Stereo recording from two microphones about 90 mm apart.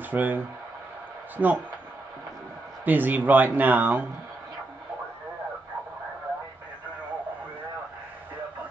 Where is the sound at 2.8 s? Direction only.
20° right (ahead or behind).